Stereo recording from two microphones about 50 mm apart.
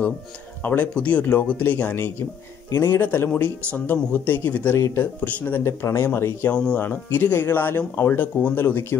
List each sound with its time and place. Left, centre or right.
0.6 s speech: left
5.6 s speech: left
6.7 s speech: left
8.1 s speech: left